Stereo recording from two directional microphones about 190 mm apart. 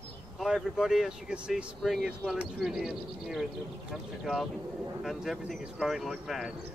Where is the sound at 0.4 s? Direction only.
Centre (ahead or behind).